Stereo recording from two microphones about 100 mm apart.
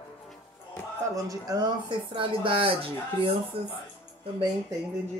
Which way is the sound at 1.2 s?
40° right (ahead or behind).